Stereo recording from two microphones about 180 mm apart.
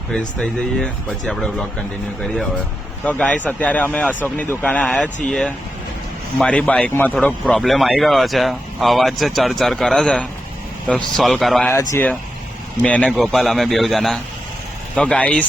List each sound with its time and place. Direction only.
0.3 s a man's voice: centre (ahead or behind)
3.0 s a man's voice: 10° left (ahead or behind)
11.7 s speech: 15° left (ahead or behind)
12.8 s a man's voice: 5° left (ahead or behind)